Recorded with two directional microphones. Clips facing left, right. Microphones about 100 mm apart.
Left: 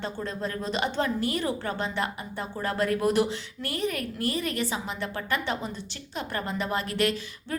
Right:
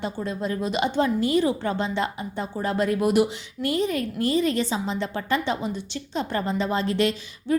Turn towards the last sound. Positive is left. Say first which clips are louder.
# right 5 dB
turn(degrees=-20)  # may be behind; listen again after turning